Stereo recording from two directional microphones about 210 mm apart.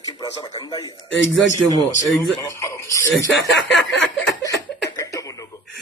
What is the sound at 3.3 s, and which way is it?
Speech, 60° left (ahead or behind).